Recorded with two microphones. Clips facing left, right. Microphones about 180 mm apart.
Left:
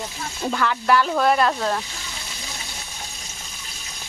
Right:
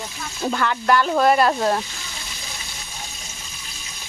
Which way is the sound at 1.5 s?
20° right (ahead or behind).